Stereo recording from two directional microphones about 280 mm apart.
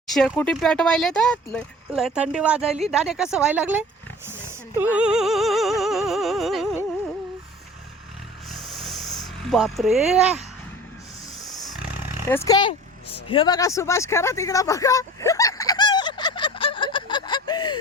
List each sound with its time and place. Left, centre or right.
0.1 s speech: centre
4.3 s music: centre
8.7 s a sound: centre
11.7 s roaring cats: centre
12.4 s speech: centre
13.2 s a sound: centre